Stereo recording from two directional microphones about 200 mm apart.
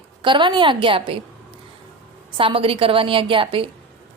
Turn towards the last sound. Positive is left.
turn(degrees=-25)  # may be behind; listen again after turning